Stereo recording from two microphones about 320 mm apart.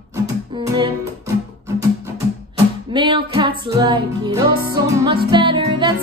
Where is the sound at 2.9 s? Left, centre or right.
Centre.